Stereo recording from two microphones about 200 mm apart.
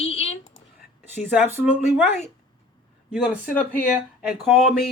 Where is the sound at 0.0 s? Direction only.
30° left (ahead or behind).